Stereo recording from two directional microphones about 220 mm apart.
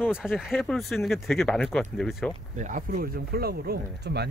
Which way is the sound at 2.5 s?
35° right (ahead or behind).